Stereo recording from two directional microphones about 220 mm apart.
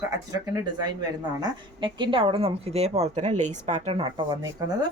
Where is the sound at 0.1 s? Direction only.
15° right (ahead or behind).